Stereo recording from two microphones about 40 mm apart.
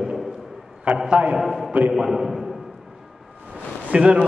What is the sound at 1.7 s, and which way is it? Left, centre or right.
Speech, right.